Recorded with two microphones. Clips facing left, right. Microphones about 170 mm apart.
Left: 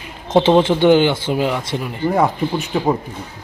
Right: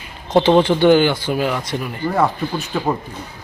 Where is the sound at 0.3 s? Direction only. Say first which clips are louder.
Even; 20° left (ahead or behind).